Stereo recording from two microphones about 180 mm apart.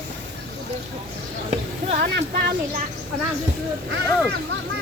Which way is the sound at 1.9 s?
55° right (ahead or behind).